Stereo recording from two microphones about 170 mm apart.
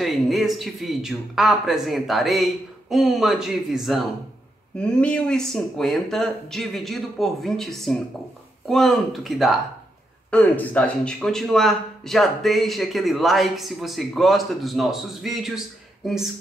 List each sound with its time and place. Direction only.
0.0 s a man's voice: centre (ahead or behind)